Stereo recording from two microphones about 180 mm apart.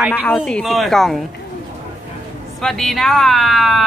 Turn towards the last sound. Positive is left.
turn(degrees=0)  # may be behind; listen again after turning